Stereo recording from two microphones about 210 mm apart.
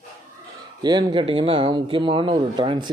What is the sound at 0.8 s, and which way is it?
Speech, 20° right (ahead or behind).